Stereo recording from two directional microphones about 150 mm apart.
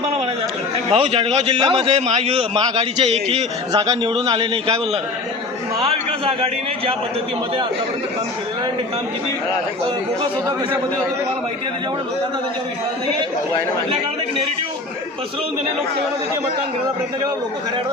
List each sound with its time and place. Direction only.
0.9 s a man's voice: 40° right (ahead or behind)
1.9 s a man's voice: 45° right (ahead or behind)
2.6 s a man's voice: 30° right (ahead or behind)
3.1 s a man's voice: 45° right (ahead or behind)
3.7 s a man's voice: 30° right (ahead or behind)
5.8 s a man's voice: 40° right (ahead or behind)